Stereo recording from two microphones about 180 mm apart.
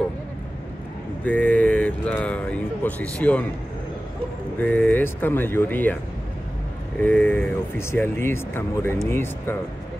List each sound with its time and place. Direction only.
1.2 s speech: 10° left (ahead or behind)
4.6 s speech: 10° left (ahead or behind)
7.0 s speech: 10° left (ahead or behind)